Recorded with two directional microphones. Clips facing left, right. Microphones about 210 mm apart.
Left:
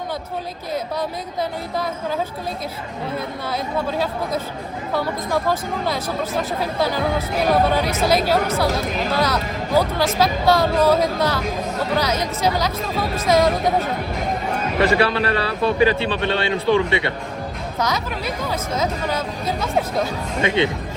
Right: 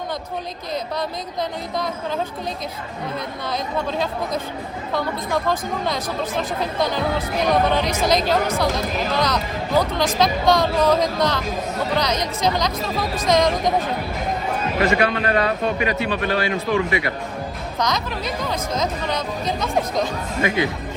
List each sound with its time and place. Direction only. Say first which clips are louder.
3.4 s speech: even; 5° left (ahead or behind)
14.8 s a man's voice: left 2 dB; 30° left (ahead or behind)
17.7 s speech: even; 10° left (ahead or behind)
20.4 s speech: left 2 dB; 25° left (ahead or behind)